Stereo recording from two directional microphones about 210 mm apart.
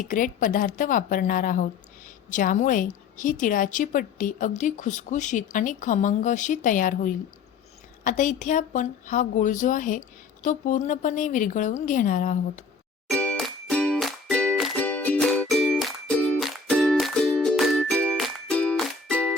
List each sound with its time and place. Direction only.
0.0 s a woman's voice: 40° left (ahead or behind)
13.1 s music: 5° left (ahead or behind)